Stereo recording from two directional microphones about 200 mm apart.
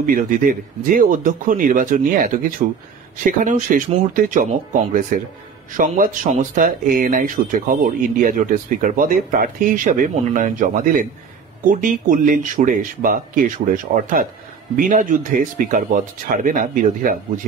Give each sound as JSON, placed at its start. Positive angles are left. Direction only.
{"t": 0.0, "sound": "speech", "side_deg": -45}
{"t": 14.8, "sound": "speech", "side_deg": -40}